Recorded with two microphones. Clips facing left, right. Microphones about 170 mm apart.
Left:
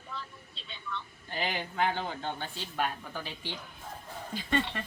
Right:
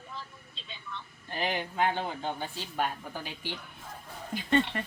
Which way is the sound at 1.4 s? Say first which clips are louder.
Right 2 dB; 20° right (ahead or behind).